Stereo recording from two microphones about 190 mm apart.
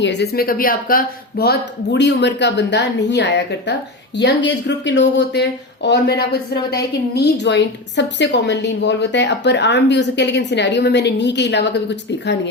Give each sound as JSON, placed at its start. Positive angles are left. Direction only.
{"t": 0.0, "sound": "speech", "side_deg": 65}